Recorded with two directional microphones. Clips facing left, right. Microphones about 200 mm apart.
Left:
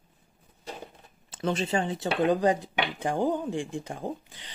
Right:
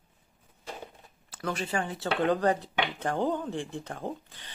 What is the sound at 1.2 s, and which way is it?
Speech, 20° left (ahead or behind).